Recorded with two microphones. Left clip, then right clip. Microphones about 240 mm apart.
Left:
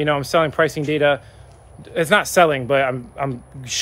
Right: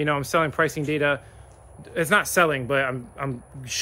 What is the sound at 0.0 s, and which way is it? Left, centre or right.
Speech, centre.